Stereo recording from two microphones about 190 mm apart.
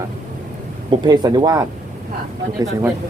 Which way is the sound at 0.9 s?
20° right (ahead or behind).